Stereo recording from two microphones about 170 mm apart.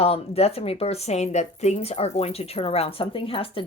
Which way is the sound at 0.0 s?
35° left (ahead or behind).